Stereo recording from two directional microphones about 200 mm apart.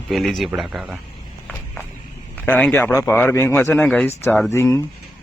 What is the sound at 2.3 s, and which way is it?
A man's voice, 10° left (ahead or behind).